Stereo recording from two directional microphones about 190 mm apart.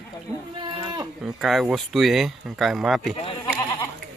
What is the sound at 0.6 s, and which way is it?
Speech, 20° right (ahead or behind).